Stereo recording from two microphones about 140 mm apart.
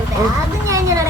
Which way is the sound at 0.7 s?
25° right (ahead or behind).